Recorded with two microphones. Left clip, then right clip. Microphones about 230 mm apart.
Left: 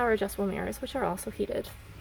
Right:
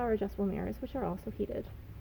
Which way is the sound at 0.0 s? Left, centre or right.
Centre.